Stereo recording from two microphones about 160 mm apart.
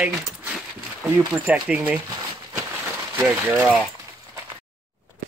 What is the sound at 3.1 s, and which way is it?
Speech, 15° right (ahead or behind).